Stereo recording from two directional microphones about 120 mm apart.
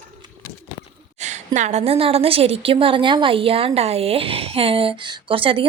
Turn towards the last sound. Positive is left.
turn(degrees=-45)  # may be behind; listen again after turning